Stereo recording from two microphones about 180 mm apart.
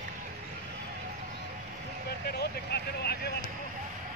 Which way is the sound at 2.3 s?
65° left (ahead or behind).